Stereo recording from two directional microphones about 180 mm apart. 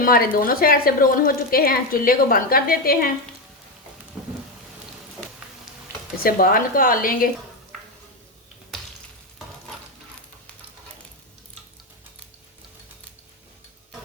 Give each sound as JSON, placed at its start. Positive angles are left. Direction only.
{"t": 0.0, "sound": "speech", "side_deg": 55}
{"t": 4.2, "sound": "rain", "side_deg": -5}
{"t": 6.2, "sound": "a woman's voice", "side_deg": 50}